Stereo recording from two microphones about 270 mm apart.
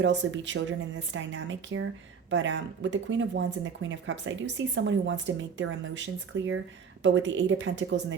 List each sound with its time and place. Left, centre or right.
0.0 s speech: right